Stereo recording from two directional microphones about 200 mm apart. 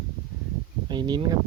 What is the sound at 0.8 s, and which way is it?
Speech, 20° right (ahead or behind).